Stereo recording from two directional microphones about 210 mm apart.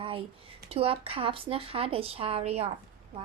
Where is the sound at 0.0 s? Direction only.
25° right (ahead or behind).